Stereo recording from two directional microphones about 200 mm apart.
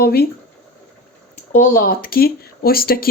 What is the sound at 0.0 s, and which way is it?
Speech, 50° left (ahead or behind).